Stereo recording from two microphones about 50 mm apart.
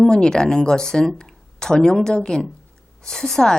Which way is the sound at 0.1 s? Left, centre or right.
Centre.